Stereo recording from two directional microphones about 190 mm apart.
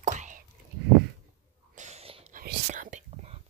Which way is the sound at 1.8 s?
35° right (ahead or behind).